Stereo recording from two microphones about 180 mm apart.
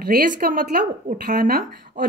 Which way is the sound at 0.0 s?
55° right (ahead or behind).